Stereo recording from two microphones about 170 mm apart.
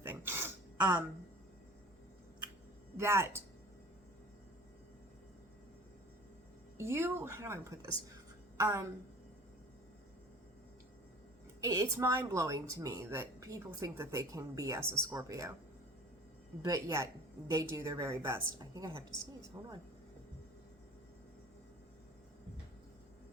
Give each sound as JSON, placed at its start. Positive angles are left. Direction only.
{"t": 0.0, "sound": "throat clearing", "side_deg": -15}
{"t": 3.0, "sound": "a woman's voice", "side_deg": -15}
{"t": 6.7, "sound": "a woman's voice", "side_deg": -15}
{"t": 11.6, "sound": "a woman's voice", "side_deg": -15}
{"t": 16.6, "sound": "a woman's voice", "side_deg": -20}